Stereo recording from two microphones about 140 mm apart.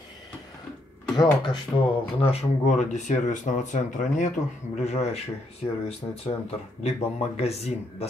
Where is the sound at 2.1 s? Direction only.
45° left (ahead or behind); by 4.3 s 60° left (ahead or behind).